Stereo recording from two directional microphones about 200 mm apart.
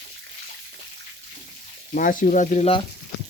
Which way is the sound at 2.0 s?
40° left (ahead or behind).